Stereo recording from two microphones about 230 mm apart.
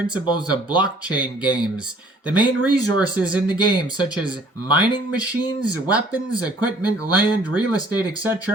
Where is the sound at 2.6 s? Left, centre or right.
Centre.